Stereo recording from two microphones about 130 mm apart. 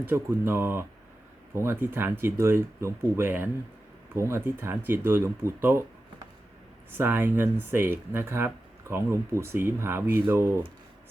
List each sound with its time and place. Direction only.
0.0 s speech: 15° right (ahead or behind)
6.9 s speech: 15° right (ahead or behind)